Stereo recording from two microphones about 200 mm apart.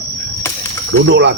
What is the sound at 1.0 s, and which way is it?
Speech, 60° right (ahead or behind).